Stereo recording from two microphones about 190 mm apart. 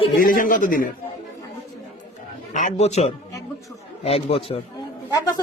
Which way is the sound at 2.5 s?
40° left (ahead or behind).